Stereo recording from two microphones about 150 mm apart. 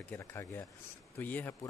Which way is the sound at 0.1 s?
15° left (ahead or behind).